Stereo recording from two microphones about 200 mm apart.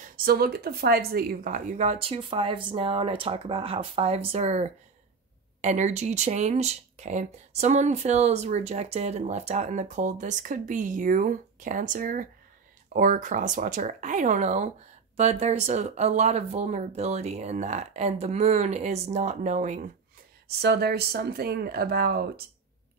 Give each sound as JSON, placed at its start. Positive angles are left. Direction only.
{"t": 0.0, "sound": "speech", "side_deg": -45}
{"t": 20.4, "sound": "speech", "side_deg": -55}